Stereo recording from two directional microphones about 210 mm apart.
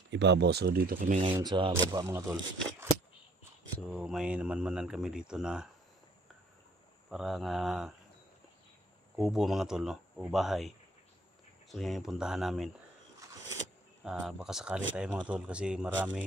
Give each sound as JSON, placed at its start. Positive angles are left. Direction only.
{"t": 0.1, "sound": "speech", "side_deg": -55}
{"t": 1.3, "sound": "speech", "side_deg": -20}
{"t": 3.9, "sound": "speech", "side_deg": -5}
{"t": 7.1, "sound": "speech", "side_deg": 0}
{"t": 9.1, "sound": "speech", "side_deg": 0}
{"t": 11.7, "sound": "speech", "side_deg": 0}
{"t": 14.0, "sound": "speech", "side_deg": 0}